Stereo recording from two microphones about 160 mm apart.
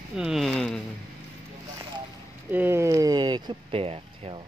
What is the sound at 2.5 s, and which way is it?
Speech, 15° right (ahead or behind).